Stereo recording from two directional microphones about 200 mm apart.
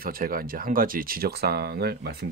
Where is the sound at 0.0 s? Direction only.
45° right (ahead or behind).